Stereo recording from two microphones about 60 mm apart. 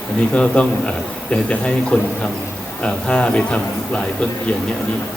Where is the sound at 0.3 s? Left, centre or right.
Centre.